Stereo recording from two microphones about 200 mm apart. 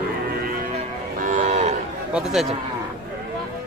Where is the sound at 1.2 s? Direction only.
40° right (ahead or behind).